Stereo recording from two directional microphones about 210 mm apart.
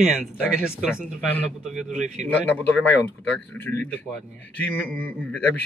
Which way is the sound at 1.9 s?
35° right (ahead or behind).